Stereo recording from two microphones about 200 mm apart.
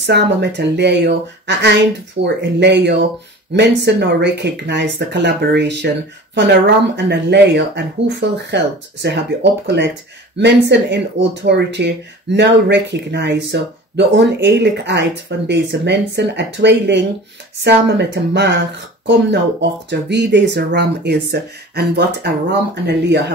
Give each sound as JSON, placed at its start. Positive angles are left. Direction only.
{"t": 0.0, "sound": "speech", "side_deg": -60}
{"t": 19.9, "sound": "speech", "side_deg": -60}